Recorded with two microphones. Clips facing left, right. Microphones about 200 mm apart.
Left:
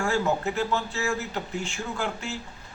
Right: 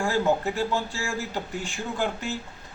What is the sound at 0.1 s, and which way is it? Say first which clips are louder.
Speech: right 2 dB; 35° right (ahead or behind).